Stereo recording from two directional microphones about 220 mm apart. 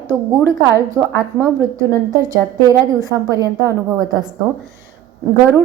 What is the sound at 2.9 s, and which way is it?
Speech, 15° right (ahead or behind).